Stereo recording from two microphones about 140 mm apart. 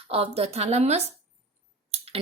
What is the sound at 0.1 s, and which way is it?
Speech, 45° right (ahead or behind).